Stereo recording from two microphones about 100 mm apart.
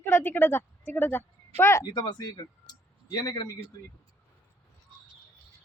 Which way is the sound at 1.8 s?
45° left (ahead or behind).